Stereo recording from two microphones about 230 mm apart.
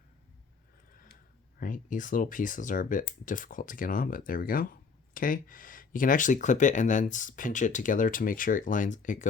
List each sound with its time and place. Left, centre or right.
1.5 s speech: left